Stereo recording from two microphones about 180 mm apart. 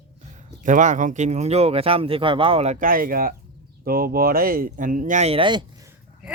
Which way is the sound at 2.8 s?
55° right (ahead or behind).